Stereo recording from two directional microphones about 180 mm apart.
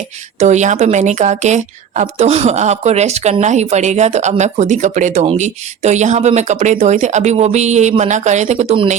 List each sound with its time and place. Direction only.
0.3 s speech: 40° right (ahead or behind)